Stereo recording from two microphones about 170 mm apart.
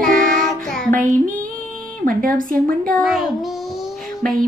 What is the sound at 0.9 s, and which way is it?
Child singing, 50° right (ahead or behind).